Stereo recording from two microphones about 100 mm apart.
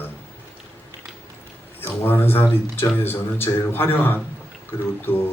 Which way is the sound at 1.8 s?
20° left (ahead or behind).